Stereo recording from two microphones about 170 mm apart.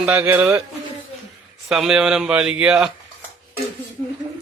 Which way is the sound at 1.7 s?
5° right (ahead or behind).